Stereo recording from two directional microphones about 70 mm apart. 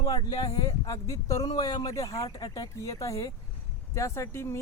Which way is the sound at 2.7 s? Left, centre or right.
Left.